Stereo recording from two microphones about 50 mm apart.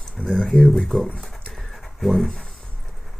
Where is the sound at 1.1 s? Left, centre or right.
Centre.